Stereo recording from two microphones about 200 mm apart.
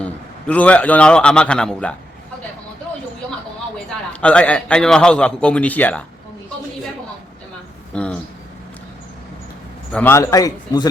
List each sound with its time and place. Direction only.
0.0 s a man's voice: 5° left (ahead or behind)
4.1 s a man's voice: 5° left (ahead or behind)
7.9 s a man's voice: 5° left (ahead or behind)
9.9 s speech: 10° left (ahead or behind)